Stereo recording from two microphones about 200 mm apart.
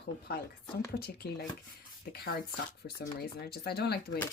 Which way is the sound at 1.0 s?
50° left (ahead or behind).